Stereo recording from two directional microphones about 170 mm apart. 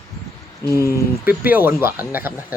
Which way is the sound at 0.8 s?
10° right (ahead or behind).